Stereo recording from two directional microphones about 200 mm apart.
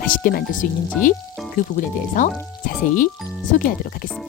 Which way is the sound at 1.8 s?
40° left (ahead or behind).